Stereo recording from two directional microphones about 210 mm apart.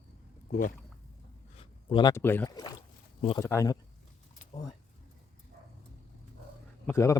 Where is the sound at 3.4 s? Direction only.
15° left (ahead or behind).